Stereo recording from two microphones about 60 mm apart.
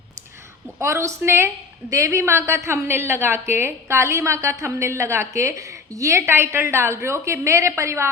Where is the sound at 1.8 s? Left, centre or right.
Right.